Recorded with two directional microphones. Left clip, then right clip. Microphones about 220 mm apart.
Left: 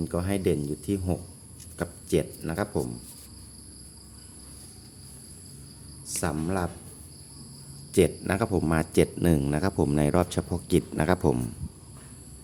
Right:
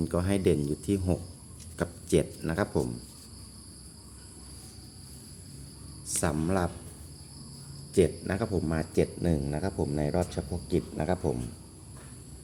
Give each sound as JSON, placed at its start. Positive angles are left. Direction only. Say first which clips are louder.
{"t": 0.0, "sound": "speech", "louder": "even", "side_deg": 0}
{"t": 6.1, "sound": "speech", "louder": "even", "side_deg": 0}
{"t": 7.9, "sound": "speech", "louder": "left 3 dB", "side_deg": 20}